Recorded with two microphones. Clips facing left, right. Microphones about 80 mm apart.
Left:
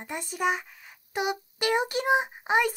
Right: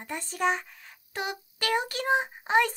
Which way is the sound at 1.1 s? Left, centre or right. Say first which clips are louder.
Left 5 dB; centre.